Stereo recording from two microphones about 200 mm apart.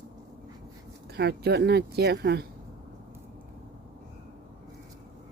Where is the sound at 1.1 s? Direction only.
55° right (ahead or behind).